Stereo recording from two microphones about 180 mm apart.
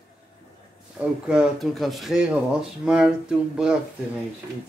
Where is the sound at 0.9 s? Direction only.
5° right (ahead or behind).